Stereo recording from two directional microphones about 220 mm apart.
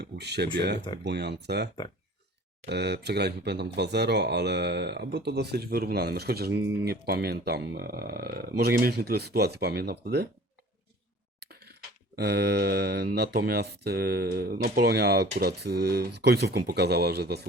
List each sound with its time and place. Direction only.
0.0 s a sound: 50° right (ahead or behind)
1.0 s speech: 50° right (ahead or behind)
11.3 s speech: 45° right (ahead or behind)